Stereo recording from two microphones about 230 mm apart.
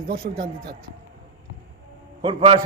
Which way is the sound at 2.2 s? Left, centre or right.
Right.